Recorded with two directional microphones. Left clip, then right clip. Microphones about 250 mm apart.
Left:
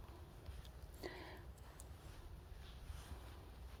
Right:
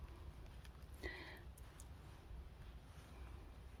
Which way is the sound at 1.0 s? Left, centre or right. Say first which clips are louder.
Even; centre.